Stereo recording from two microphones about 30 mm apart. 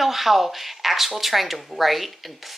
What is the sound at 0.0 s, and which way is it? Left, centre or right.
Speech, centre.